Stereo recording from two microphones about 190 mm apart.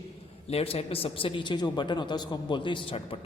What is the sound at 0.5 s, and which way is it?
A man's voice, 30° left (ahead or behind).